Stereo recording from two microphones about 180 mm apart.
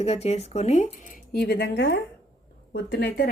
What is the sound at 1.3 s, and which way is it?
Speech, 60° left (ahead or behind).